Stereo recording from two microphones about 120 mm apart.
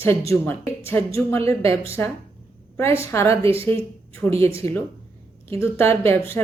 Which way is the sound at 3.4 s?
50° right (ahead or behind).